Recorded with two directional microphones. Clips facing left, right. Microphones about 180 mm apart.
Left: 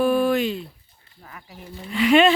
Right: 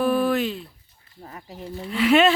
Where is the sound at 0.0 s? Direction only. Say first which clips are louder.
Left 2 dB; centre (ahead or behind).